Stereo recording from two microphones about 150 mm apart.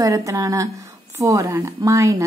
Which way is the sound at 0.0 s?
20° right (ahead or behind).